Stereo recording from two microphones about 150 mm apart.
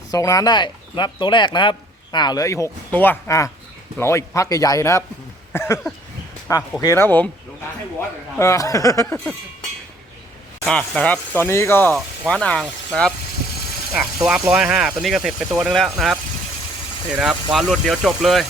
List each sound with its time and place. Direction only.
0.1 s speech: 25° left (ahead or behind)
10.6 s speech: 5° left (ahead or behind)
17.2 s speech: 5° right (ahead or behind)